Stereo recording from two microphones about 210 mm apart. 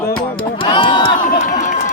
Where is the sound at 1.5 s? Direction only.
40° left (ahead or behind).